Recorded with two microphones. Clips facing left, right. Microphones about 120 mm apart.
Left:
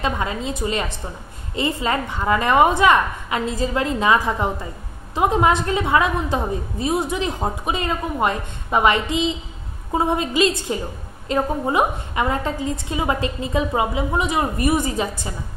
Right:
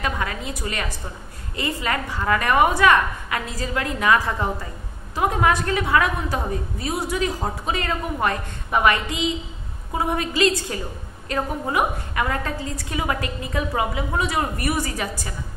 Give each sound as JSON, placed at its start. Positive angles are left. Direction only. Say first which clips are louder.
{"t": 0.0, "sound": "a woman's voice", "louder": "left 3 dB", "side_deg": 20}